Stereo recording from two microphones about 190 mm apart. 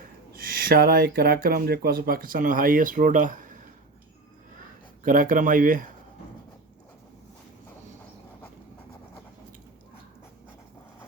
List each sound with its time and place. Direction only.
0.7 s speech: 50° right (ahead or behind)
5.0 s speech: 45° right (ahead or behind)